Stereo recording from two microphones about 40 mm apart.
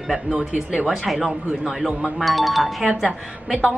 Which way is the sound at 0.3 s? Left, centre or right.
Centre.